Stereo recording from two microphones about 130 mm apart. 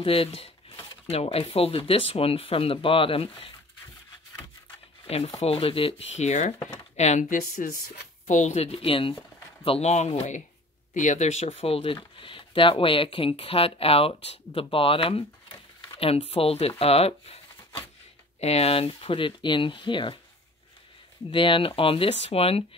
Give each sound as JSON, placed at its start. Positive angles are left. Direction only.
{"t": 0.0, "sound": "speech", "side_deg": 45}
{"t": 5.0, "sound": "speech", "side_deg": 50}
{"t": 6.1, "sound": "speech", "side_deg": 65}
{"t": 8.3, "sound": "speech", "side_deg": 65}
{"t": 9.7, "sound": "speech", "side_deg": 55}
{"t": 21.3, "sound": "speech", "side_deg": 40}